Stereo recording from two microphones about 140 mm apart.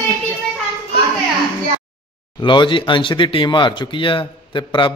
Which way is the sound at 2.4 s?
35° left (ahead or behind).